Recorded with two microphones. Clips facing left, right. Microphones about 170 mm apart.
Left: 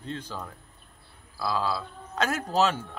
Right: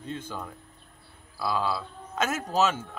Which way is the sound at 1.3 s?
15° right (ahead or behind).